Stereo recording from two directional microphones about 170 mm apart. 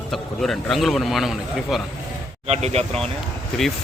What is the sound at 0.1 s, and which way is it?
Speech, centre (ahead or behind).